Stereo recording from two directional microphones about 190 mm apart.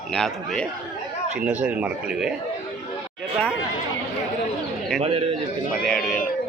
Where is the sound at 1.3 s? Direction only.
5° right (ahead or behind).